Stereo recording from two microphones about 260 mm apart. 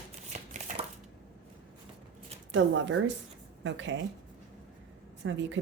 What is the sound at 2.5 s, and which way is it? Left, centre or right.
Speech, right.